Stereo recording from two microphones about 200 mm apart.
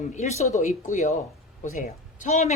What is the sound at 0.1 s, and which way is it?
A woman's voice, 35° left (ahead or behind).